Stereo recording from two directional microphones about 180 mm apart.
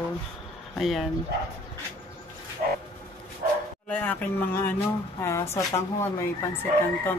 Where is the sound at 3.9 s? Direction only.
10° left (ahead or behind).